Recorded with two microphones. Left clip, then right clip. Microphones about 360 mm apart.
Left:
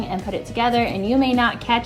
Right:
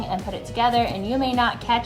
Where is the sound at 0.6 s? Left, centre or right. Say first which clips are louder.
Left 1 dB; right.